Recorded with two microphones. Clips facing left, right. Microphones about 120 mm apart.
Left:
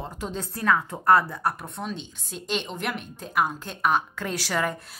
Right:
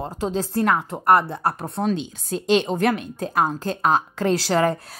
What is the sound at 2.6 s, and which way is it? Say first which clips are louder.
A woman's voice: right 10 dB; 45° right (ahead or behind).